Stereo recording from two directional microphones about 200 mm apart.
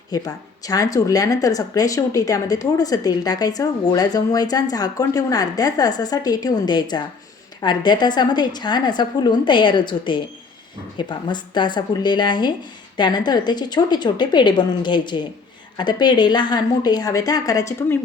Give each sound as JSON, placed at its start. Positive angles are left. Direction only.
{"t": 0.1, "sound": "a woman's voice", "side_deg": 20}